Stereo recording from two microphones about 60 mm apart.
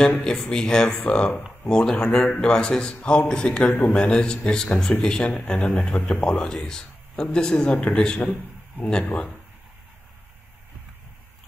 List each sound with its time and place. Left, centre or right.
0.0 s speech: centre